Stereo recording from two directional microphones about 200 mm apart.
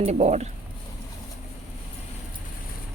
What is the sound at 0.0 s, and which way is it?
Speech, 30° right (ahead or behind).